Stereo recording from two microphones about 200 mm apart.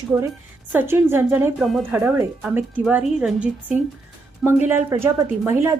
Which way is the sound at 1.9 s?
10° right (ahead or behind).